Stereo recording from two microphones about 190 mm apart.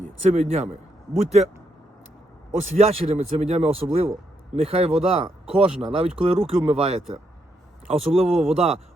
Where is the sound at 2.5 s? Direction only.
35° right (ahead or behind).